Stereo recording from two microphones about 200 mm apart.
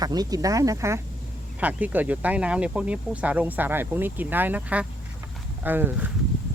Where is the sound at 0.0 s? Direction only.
20° right (ahead or behind).